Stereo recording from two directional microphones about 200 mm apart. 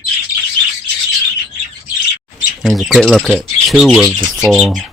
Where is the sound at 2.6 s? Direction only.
Centre (ahead or behind).